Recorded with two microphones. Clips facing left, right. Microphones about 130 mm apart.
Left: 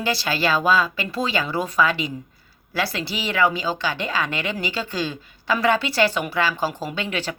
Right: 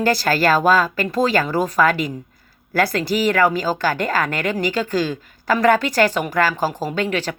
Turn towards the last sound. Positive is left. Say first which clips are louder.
# right 5 dB
turn(degrees=-40)  # may be behind; listen again after turning